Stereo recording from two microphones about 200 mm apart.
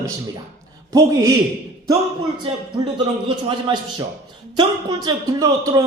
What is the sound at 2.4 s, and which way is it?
Speech, 20° right (ahead or behind).